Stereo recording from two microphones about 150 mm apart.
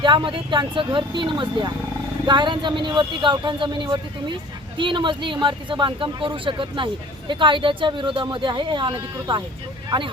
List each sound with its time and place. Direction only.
0.0 s speech: 30° right (ahead or behind)